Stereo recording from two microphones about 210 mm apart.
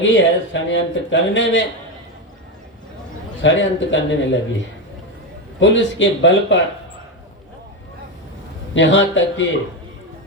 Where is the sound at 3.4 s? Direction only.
60° left (ahead or behind).